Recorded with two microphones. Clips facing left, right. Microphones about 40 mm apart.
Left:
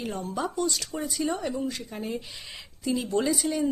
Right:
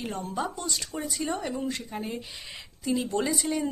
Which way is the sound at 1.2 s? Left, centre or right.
Centre.